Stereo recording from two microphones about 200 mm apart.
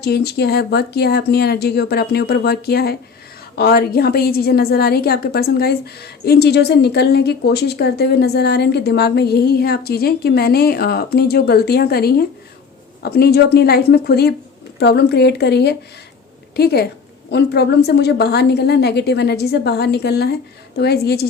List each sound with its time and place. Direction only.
0.0 s a woman's voice: 55° left (ahead or behind)